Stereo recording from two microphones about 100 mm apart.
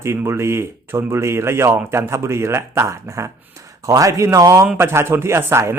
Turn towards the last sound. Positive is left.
turn(degrees=-25)  # may be behind; listen again after turning